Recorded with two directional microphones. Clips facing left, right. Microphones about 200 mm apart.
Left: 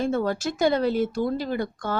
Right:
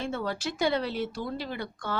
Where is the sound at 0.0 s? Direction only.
45° left (ahead or behind).